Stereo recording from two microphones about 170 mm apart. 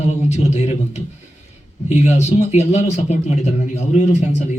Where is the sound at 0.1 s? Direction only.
40° left (ahead or behind).